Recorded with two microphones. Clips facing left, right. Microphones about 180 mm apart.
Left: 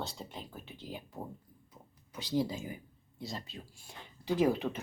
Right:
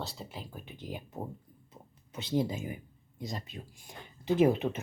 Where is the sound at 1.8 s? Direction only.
25° right (ahead or behind).